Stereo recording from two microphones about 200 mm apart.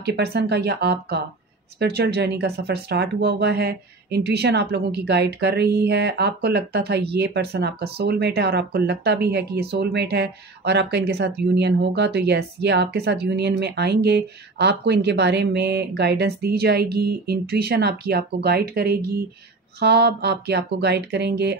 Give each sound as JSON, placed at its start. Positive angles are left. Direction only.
{"t": 0.0, "sound": "speech", "side_deg": -55}